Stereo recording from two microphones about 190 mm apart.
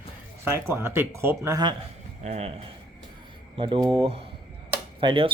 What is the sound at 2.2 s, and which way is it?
Speech, 35° right (ahead or behind).